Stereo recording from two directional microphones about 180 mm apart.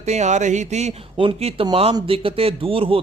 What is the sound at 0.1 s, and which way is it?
A man's voice, 40° right (ahead or behind).